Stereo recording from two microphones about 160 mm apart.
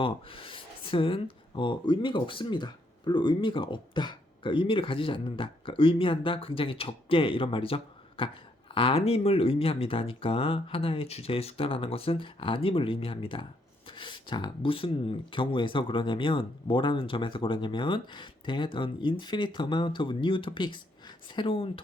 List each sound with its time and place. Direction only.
0.0 s speech: 35° left (ahead or behind)